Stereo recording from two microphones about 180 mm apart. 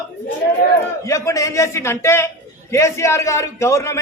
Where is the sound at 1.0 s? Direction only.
15° left (ahead or behind).